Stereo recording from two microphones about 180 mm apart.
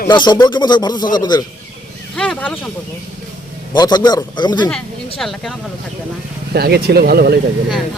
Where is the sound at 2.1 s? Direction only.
5° left (ahead or behind).